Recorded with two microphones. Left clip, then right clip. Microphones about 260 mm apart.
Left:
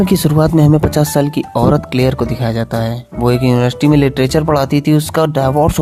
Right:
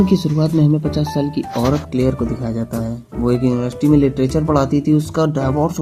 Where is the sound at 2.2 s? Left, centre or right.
Left.